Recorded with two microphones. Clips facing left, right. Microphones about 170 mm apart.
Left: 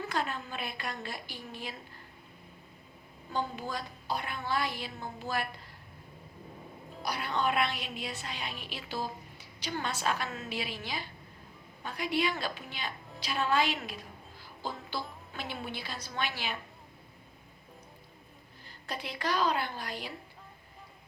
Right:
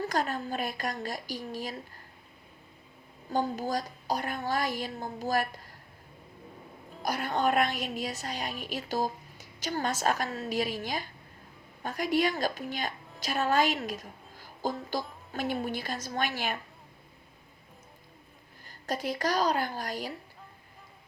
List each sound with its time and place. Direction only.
0.0 s a woman's voice: 40° right (ahead or behind)
3.2 s a woman's voice: 40° right (ahead or behind)
7.0 s a woman's voice: 45° right (ahead or behind)
18.6 s a woman's voice: 45° right (ahead or behind)